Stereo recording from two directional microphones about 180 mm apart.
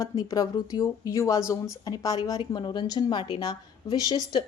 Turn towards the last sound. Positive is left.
turn(degrees=20)  # may be behind; listen again after turning